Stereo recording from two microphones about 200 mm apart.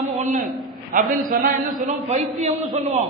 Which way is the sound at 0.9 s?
45° right (ahead or behind).